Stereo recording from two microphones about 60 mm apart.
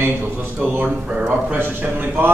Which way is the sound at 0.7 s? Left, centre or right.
Right.